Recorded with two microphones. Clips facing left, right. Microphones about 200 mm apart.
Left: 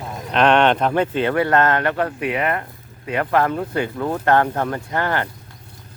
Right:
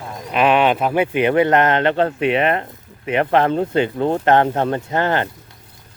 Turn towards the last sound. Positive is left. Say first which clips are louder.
# right 3 dB
turn(degrees=-20)  # may be behind; listen again after turning